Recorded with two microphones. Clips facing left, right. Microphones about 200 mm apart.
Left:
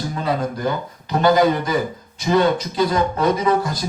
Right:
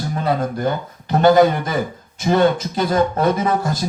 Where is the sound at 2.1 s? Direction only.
50° right (ahead or behind).